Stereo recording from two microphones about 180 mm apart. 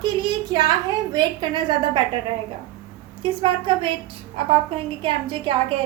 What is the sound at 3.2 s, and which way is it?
Speech, 25° right (ahead or behind).